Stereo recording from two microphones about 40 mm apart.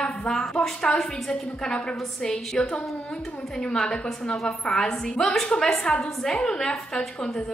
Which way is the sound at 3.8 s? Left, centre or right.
Left.